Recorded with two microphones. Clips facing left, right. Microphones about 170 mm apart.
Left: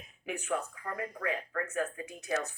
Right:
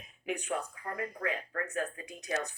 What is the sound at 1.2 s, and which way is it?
Speech, 35° right (ahead or behind).